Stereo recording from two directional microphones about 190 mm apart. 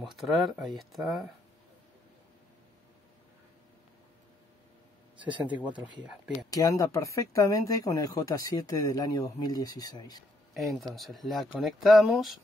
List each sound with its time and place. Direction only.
0.0 s speech: centre (ahead or behind)
5.9 s speech: 5° right (ahead or behind)
6.5 s speech: 20° left (ahead or behind)
10.5 s speech: centre (ahead or behind)